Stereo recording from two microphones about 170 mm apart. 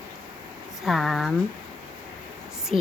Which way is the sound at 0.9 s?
Centre (ahead or behind).